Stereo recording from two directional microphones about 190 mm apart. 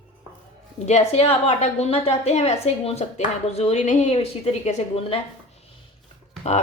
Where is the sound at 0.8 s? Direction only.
35° left (ahead or behind).